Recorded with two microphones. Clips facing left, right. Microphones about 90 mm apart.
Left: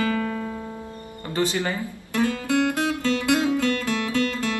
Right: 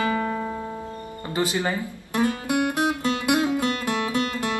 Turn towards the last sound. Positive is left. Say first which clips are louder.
# left 1 dB
turn(degrees=-20)  # may be behind; listen again after turning